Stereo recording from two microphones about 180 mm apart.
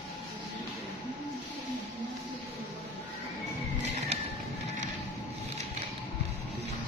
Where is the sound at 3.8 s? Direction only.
35° right (ahead or behind).